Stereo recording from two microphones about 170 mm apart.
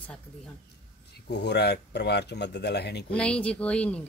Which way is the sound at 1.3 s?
80° left.